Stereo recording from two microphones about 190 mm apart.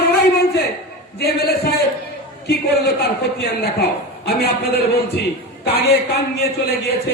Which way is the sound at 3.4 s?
60° left (ahead or behind).